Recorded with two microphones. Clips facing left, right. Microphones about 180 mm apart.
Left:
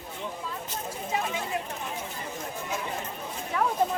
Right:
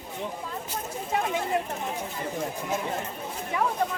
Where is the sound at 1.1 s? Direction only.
55° right (ahead or behind).